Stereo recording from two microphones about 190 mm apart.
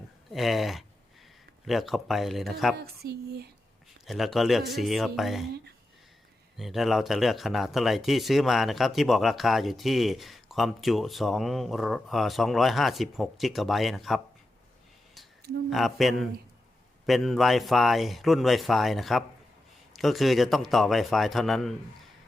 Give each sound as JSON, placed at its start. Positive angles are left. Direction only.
{"t": 0.3, "sound": "speech", "side_deg": 0}
{"t": 2.7, "sound": "speech", "side_deg": -55}
{"t": 4.0, "sound": "speech", "side_deg": 0}
{"t": 6.6, "sound": "speech", "side_deg": 0}
{"t": 15.7, "sound": "speech", "side_deg": 0}